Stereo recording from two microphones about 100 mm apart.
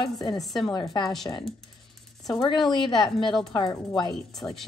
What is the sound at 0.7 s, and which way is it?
Speech, 45° left (ahead or behind).